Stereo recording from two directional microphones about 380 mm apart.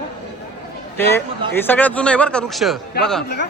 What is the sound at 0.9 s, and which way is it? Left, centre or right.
A man's voice, centre.